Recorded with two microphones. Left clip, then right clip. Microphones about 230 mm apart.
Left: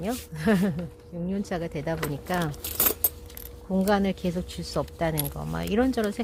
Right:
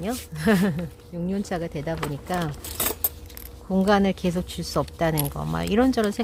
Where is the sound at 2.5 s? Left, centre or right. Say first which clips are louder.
Even; left.